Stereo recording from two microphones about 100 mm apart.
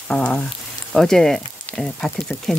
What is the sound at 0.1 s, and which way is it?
Speech, 10° left (ahead or behind).